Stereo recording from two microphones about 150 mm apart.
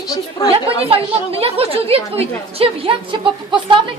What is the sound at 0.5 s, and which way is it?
A woman's voice, 40° right (ahead or behind).